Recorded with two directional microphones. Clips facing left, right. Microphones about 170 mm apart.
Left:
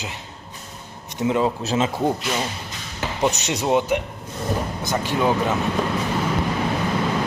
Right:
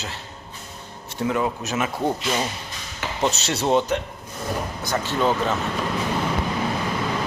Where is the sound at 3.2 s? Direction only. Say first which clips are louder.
Left 1 dB; 15° left (ahead or behind).